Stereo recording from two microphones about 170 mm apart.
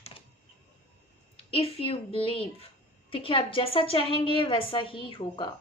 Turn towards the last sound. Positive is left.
turn(degrees=30)  # may be behind; listen again after turning